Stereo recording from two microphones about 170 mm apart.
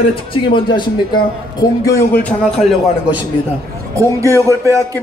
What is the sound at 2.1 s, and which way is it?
Speech, 5° left (ahead or behind).